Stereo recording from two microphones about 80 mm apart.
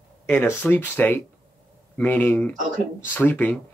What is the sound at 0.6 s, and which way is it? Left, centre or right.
Speech, left.